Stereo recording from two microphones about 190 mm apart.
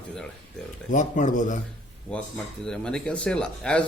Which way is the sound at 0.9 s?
40° left (ahead or behind).